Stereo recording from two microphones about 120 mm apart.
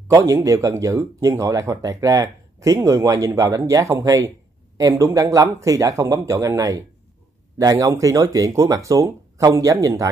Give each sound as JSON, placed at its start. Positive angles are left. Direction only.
{"t": 0.1, "sound": "speech", "side_deg": -25}